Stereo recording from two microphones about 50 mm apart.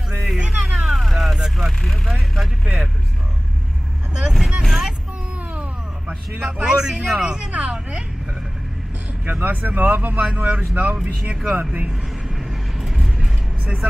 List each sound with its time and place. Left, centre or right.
0.7 s vehicle: centre
4.1 s speech: centre
6.4 s speech: centre
9.2 s speech: right
12.4 s vehicle: centre